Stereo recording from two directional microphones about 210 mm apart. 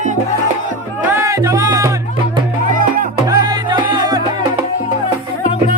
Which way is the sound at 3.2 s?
20° right (ahead or behind).